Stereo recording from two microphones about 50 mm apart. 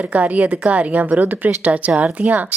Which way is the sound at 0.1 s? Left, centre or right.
Right.